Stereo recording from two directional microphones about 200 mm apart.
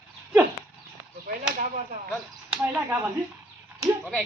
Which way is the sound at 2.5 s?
10° right (ahead or behind).